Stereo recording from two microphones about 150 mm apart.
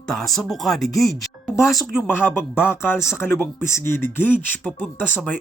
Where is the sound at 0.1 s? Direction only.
Centre (ahead or behind).